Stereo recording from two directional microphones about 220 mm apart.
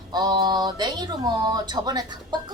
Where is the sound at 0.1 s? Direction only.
20° right (ahead or behind).